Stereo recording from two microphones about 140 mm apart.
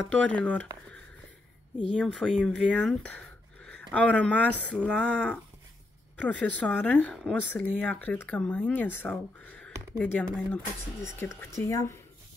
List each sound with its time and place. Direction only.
0.4 s speech: 10° left (ahead or behind)
1.8 s speech: 5° left (ahead or behind); by 12.0 s 20° left (ahead or behind)